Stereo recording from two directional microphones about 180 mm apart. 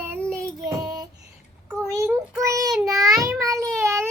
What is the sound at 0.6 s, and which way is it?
A child's voice, 20° right (ahead or behind).